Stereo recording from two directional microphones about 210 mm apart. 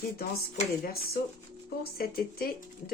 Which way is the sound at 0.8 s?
45° left (ahead or behind).